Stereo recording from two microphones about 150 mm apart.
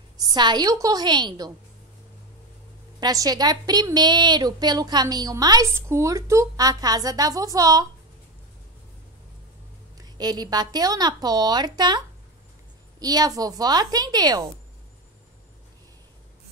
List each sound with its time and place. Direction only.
0.2 s a woman's voice: 30° right (ahead or behind)
3.0 s a woman's voice: 25° right (ahead or behind)
9.9 s a woman's voice: 25° right (ahead or behind)
13.0 s a woman's voice: 25° right (ahead or behind)